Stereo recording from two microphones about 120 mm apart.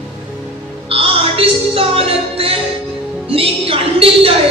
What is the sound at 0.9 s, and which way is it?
Music, 50° right (ahead or behind).